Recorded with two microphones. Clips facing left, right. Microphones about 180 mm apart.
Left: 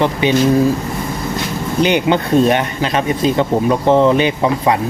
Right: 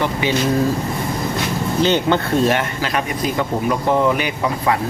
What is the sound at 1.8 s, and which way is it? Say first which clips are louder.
Speech: left 3 dB; 15° left (ahead or behind).